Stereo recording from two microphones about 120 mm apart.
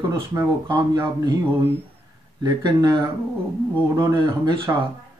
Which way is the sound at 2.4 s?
35° right (ahead or behind).